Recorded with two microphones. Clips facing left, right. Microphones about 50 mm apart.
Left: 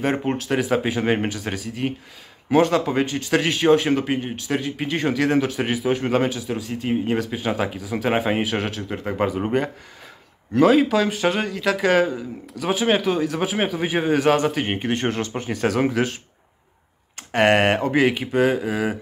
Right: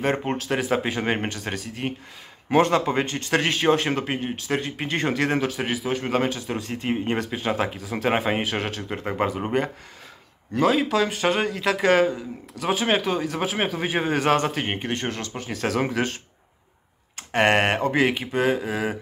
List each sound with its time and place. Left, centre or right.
0.0 s a man's voice: centre
14.9 s speech: centre
15.5 s a man's voice: centre
17.3 s a man's voice: centre